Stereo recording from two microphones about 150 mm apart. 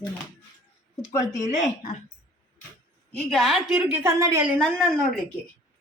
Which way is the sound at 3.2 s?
Centre (ahead or behind).